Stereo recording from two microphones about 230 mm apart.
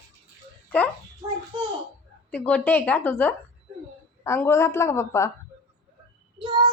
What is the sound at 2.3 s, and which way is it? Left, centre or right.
A woman's voice, centre.